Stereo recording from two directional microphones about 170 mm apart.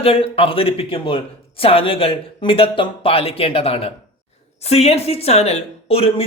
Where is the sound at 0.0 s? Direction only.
35° left (ahead or behind).